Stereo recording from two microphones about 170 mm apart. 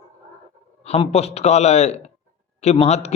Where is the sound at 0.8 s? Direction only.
40° left (ahead or behind).